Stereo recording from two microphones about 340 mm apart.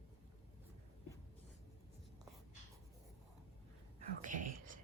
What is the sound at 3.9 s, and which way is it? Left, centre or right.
Whispering, right.